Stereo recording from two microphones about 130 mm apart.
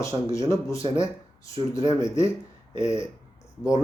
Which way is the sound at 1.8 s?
20° left (ahead or behind).